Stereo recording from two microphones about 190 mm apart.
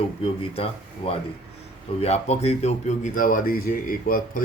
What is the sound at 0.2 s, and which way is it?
Speech, 30° left (ahead or behind).